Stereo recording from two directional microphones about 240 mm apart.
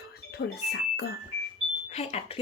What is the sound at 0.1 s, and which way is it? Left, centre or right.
Music, left.